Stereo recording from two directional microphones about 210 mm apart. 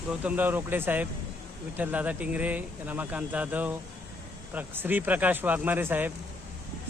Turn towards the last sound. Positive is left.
turn(degrees=-10)  # may be behind; listen again after turning